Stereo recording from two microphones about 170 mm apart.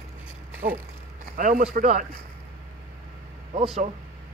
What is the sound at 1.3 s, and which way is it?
Speech, 50° right (ahead or behind).